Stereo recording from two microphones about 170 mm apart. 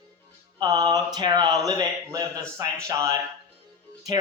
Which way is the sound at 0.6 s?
25° right (ahead or behind).